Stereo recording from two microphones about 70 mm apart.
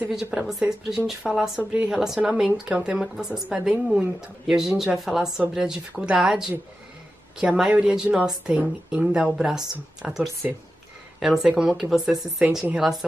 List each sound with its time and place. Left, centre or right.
0.1 s a woman's voice: centre
1.7 s a woman's voice: centre
7.4 s a woman's voice: centre